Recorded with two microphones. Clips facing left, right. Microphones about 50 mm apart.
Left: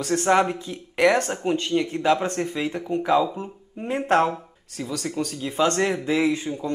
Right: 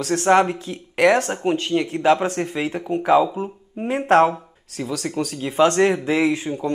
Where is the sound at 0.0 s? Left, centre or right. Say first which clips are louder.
Right 3 dB; centre.